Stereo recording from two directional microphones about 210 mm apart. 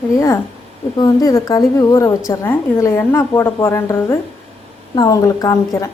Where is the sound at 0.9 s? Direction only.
15° left (ahead or behind).